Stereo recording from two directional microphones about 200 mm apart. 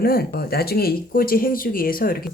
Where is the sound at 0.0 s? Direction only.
50° left (ahead or behind).